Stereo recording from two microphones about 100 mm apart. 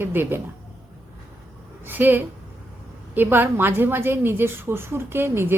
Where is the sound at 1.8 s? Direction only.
20° right (ahead or behind).